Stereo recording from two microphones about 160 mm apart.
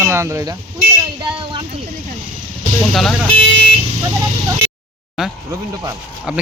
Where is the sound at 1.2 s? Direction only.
35° right (ahead or behind).